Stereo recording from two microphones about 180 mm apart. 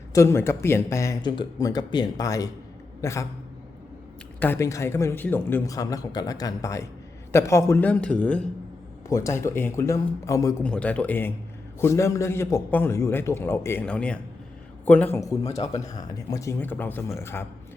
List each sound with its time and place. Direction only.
0.1 s speech: 15° left (ahead or behind)
4.4 s speech: 15° left (ahead or behind)
9.0 s speech: 20° left (ahead or behind)
10.6 s speech: 5° left (ahead or behind)